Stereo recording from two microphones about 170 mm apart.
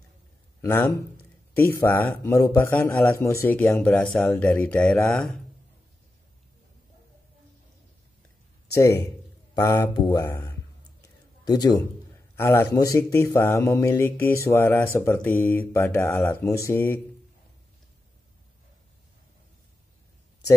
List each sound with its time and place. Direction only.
0.6 s a man's voice: 15° left (ahead or behind)
9.5 s speech: 15° left (ahead or behind)
11.0 s a sound: 25° left (ahead or behind)
12.4 s speech: 15° left (ahead or behind)